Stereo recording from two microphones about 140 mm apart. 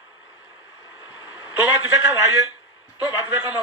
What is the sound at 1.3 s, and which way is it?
A man's voice, 15° right (ahead or behind).